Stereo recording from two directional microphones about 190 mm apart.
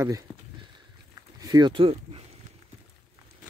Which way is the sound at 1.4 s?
20° right (ahead or behind).